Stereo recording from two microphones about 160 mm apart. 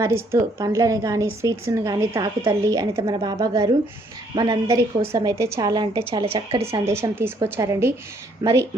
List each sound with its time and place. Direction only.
0.0 s a woman's voice: 15° right (ahead or behind)
3.1 s a woman's voice: 35° right (ahead or behind)
6.8 s a woman's voice: 15° right (ahead or behind)